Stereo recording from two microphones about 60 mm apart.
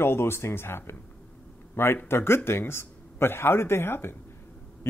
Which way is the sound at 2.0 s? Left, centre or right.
Left.